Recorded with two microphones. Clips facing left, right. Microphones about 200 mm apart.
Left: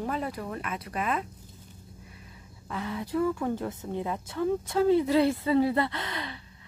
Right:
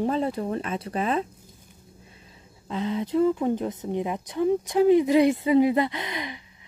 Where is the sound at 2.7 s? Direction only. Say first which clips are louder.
Right 6 dB; 20° right (ahead or behind).